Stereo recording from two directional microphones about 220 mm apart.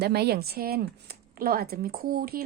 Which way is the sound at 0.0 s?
45° right (ahead or behind).